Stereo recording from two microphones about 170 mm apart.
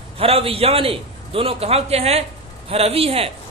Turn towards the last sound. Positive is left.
turn(degrees=-35)  # may be behind; listen again after turning